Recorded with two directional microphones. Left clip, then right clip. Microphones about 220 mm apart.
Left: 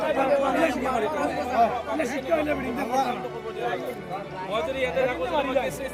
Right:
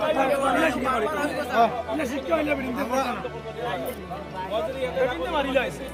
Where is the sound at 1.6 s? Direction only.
35° right (ahead or behind).